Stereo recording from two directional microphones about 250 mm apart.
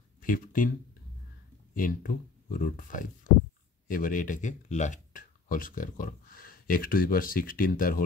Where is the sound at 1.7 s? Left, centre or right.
Left.